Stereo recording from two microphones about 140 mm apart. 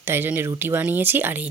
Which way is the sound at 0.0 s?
15° right (ahead or behind).